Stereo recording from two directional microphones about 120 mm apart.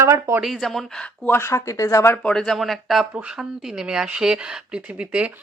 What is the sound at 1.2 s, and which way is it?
Speech, 20° left (ahead or behind).